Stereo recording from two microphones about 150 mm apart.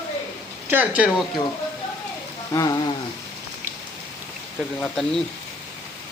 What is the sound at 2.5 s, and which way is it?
Speech, 25° left (ahead or behind).